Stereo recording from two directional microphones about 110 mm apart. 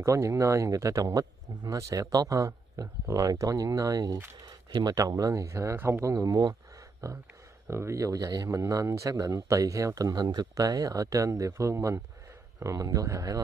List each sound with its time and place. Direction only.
0.0 s speech: 25° right (ahead or behind)